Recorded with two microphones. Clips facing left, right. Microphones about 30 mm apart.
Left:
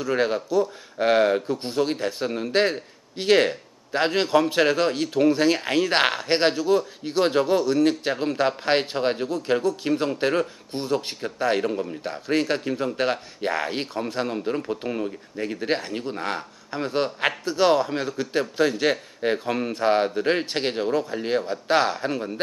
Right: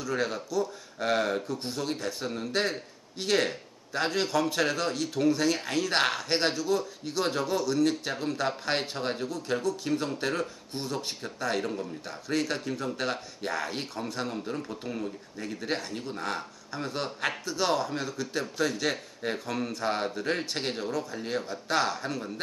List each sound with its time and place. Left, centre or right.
0.0 s speech: left